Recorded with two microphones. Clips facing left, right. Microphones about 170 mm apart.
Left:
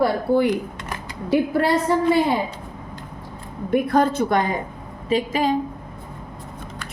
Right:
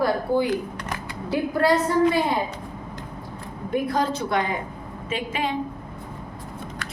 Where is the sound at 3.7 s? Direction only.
55° left (ahead or behind); by 5.6 s 40° left (ahead or behind).